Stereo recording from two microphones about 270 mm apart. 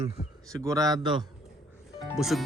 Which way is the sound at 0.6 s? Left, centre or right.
Centre.